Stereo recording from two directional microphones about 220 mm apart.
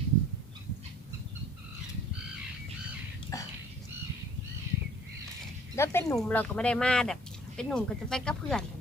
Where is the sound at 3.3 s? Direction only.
15° left (ahead or behind).